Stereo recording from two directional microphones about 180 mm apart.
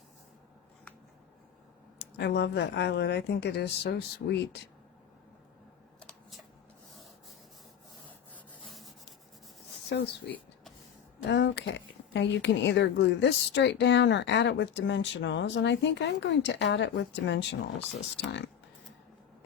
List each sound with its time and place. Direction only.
2.0 s speech: 70° left (ahead or behind)
6.0 s a sound: 5° left (ahead or behind)
9.9 s speech: 65° left (ahead or behind)
11.3 s speech: 80° left